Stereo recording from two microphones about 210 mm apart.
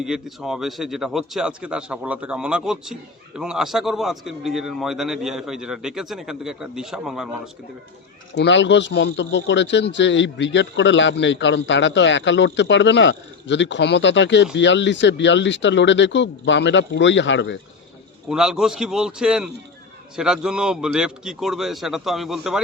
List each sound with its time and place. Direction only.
0.0 s a man's voice: centre (ahead or behind)
8.4 s a man's voice: 60° left (ahead or behind)
18.3 s a man's voice: 5° right (ahead or behind)